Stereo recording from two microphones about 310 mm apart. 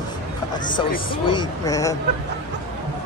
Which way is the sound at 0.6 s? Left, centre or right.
Centre.